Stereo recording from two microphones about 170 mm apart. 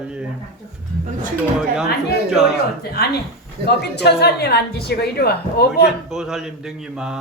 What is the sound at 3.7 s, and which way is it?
A woman's voice, 75° left (ahead or behind).